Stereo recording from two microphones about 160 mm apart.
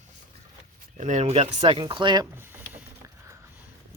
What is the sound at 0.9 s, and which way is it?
Speech, 45° right (ahead or behind).